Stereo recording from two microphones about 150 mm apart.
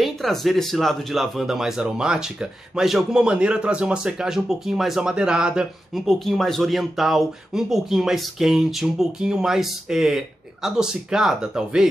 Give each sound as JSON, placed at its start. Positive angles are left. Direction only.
{"t": 0.0, "sound": "speech", "side_deg": 0}